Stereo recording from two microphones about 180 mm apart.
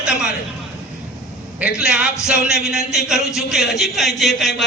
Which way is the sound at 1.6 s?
5° right (ahead or behind).